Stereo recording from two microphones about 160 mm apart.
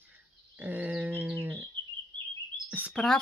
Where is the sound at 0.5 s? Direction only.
10° right (ahead or behind).